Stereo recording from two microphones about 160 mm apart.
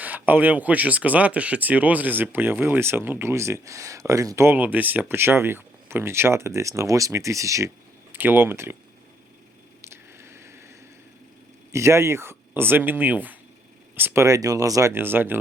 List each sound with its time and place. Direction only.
0.0 s speech: 10° right (ahead or behind)
9.8 s a sound: 15° right (ahead or behind)
11.7 s speech: 15° right (ahead or behind)